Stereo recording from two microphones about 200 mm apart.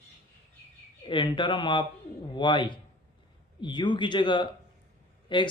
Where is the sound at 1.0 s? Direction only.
25° left (ahead or behind).